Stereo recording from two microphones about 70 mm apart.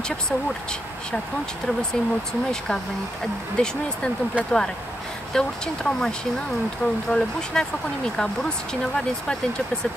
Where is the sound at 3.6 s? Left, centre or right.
Centre.